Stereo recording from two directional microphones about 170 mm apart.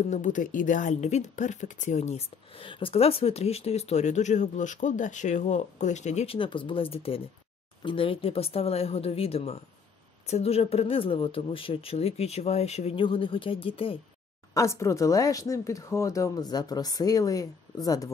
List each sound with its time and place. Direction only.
0.1 s speech: 50° left (ahead or behind); by 13.9 s 35° left (ahead or behind)
14.5 s speech: 15° left (ahead or behind)